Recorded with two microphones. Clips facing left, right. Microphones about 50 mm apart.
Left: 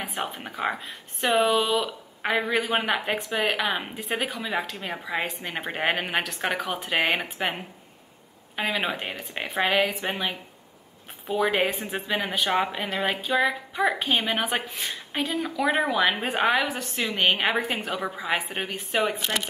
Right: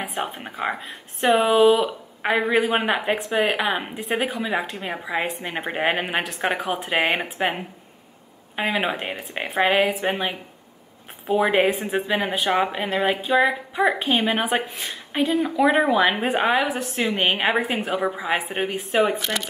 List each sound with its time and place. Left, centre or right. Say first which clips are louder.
0.0 s a woman's voice: right 3 dB; centre
11.4 s a woman's voice: right 3 dB; centre
18.8 s a woman's voice: right 5 dB; centre